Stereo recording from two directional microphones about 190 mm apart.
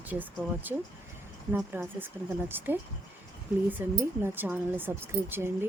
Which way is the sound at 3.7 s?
10° right (ahead or behind).